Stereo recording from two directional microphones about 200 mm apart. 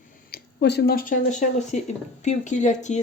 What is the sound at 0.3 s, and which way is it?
Speech, 55° left (ahead or behind).